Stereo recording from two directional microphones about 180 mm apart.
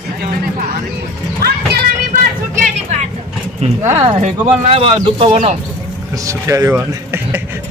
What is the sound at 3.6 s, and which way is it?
A man's voice, 35° right (ahead or behind).